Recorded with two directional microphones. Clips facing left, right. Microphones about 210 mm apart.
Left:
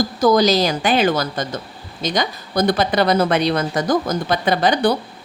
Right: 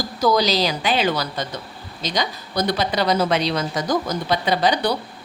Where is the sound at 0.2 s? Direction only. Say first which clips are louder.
Left 3 dB; 50° left (ahead or behind).